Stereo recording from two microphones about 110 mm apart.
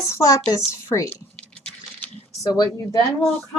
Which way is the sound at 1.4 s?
10° left (ahead or behind).